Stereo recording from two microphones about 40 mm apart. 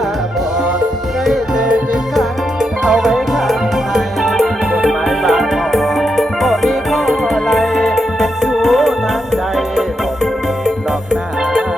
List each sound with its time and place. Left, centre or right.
1.5 s music: right
2.8 s music: centre
4.2 s music: centre